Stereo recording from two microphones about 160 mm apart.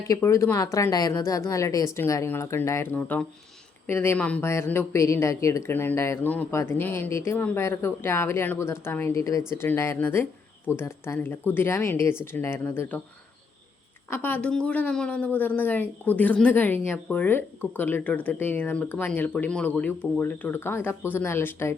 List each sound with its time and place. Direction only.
0.0 s speech: 20° left (ahead or behind)
14.1 s speech: 15° left (ahead or behind)